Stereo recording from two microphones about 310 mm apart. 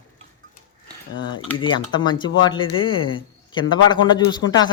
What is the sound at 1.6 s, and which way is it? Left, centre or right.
A man's voice, centre.